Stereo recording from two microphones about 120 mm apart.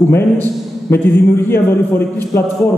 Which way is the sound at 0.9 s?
20° left (ahead or behind).